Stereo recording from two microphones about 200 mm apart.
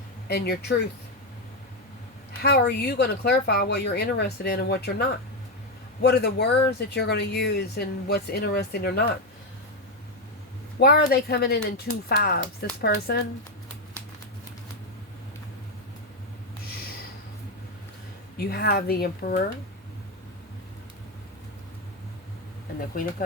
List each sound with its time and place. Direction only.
0.3 s speech: 50° left (ahead or behind)
2.4 s a man's voice: 55° left (ahead or behind)
10.8 s a man's voice: 50° left (ahead or behind)
18.3 s speech: 55° left (ahead or behind)